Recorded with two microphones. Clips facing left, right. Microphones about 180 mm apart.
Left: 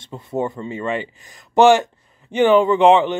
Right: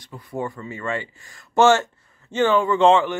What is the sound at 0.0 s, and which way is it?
Speech, 25° left (ahead or behind).